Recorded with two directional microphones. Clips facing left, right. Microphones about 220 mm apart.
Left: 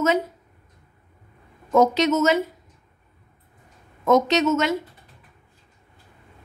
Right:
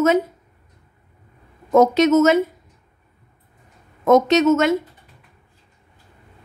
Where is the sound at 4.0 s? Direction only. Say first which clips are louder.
Right 4 dB; 50° right (ahead or behind).